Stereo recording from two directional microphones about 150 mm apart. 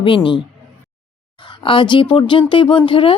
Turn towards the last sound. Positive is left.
turn(degrees=35)  # may be behind; listen again after turning